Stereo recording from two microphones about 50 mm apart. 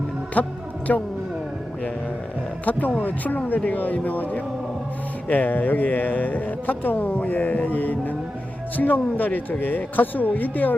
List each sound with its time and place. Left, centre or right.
0.4 s a man's voice: left
2.6 s speech: left